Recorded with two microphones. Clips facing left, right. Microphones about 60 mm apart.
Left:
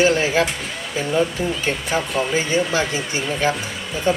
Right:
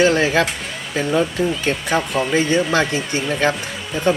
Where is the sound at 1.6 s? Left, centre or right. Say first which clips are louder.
Right 2 dB; right.